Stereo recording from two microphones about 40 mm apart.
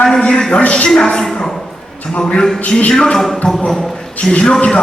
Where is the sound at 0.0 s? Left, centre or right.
Centre.